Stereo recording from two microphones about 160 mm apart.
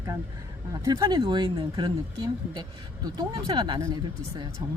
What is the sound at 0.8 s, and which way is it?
Speech, 25° right (ahead or behind).